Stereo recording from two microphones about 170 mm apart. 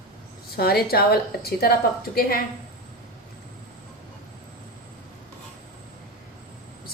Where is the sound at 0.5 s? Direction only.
65° left (ahead or behind).